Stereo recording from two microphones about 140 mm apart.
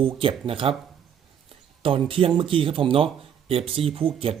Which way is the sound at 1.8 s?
40° right (ahead or behind).